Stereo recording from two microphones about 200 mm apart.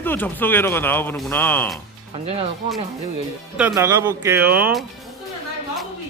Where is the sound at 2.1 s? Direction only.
30° right (ahead or behind).